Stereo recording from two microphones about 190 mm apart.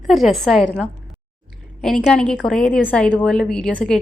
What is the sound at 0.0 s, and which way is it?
Speech, centre (ahead or behind).